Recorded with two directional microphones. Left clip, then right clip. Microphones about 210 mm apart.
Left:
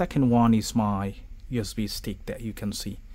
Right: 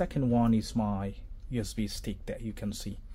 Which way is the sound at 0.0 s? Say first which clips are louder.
Left 6 dB; 30° left (ahead or behind).